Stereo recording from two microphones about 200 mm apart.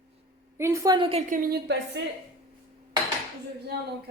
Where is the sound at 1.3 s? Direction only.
45° right (ahead or behind).